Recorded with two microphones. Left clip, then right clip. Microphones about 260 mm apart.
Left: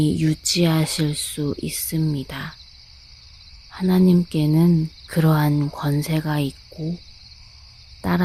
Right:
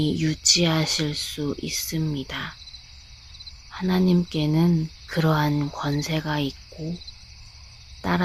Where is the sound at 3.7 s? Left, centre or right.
Left.